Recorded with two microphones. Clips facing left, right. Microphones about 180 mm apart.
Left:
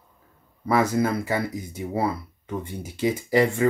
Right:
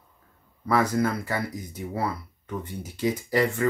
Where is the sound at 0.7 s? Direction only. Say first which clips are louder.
Left 2 dB; 25° left (ahead or behind).